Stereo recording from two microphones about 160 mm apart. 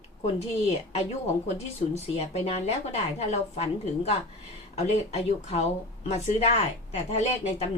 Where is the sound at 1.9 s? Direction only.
40° left (ahead or behind).